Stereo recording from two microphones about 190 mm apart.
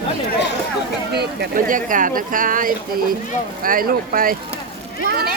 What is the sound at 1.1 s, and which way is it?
Speech, 60° right (ahead or behind).